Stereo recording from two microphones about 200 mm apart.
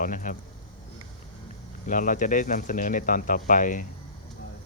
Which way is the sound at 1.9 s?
40° left (ahead or behind).